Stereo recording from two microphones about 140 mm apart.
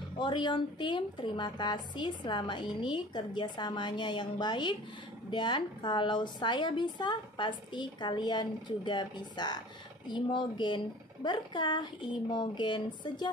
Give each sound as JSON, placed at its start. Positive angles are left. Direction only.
{"t": 0.2, "sound": "a woman's voice", "side_deg": 35}